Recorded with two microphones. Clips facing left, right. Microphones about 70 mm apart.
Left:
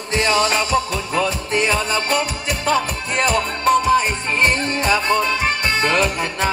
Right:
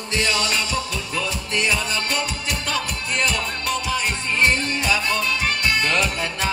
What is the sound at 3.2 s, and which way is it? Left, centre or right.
Music, left.